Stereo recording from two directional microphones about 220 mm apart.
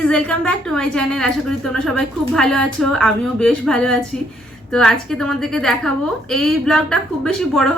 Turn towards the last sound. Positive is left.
turn(degrees=0)  # may be behind; listen again after turning